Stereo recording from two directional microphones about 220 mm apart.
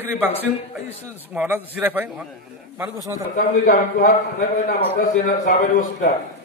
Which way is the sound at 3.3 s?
35° left (ahead or behind).